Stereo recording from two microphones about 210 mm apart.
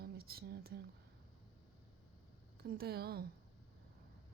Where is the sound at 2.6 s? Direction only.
50° right (ahead or behind).